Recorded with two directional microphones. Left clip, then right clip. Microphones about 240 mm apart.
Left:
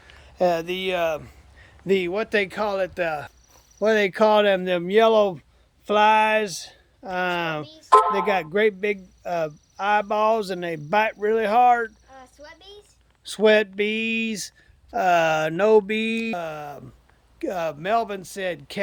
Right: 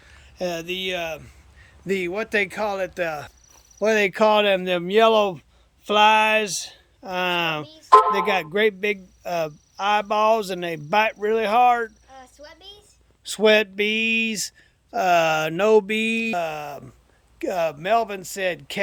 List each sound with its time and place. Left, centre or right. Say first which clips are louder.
0.0 s speech: left 7 dB; centre
12.1 s a sound: right 1 dB; centre
13.2 s speech: even; centre